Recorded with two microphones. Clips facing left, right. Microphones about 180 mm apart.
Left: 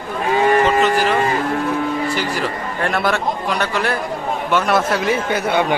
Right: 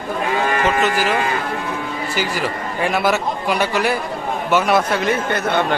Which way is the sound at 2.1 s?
5° right (ahead or behind).